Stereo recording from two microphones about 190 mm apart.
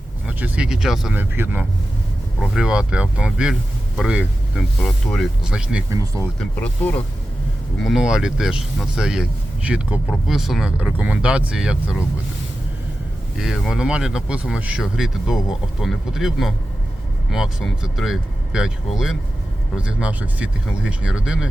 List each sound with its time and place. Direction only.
0.3 s speech: 10° right (ahead or behind)
4.8 s speech: 5° left (ahead or behind)
5.4 s speech: 5° right (ahead or behind)
5.9 s speech: 15° right (ahead or behind)
6.4 s speech: 10° left (ahead or behind)
7.8 s speech: centre (ahead or behind)
13.4 s speech: 5° right (ahead or behind)